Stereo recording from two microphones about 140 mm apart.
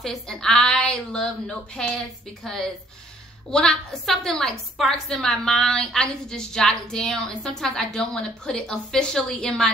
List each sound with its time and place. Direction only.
0.0 s a woman's voice: 5° left (ahead or behind)